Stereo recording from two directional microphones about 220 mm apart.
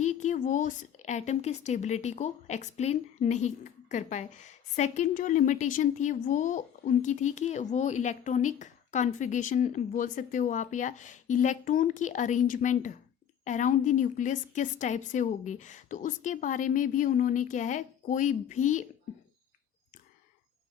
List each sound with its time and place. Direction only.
0.0 s speech: 35° left (ahead or behind)